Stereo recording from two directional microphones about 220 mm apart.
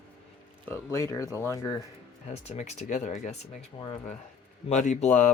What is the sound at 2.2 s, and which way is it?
Speech, 30° left (ahead or behind).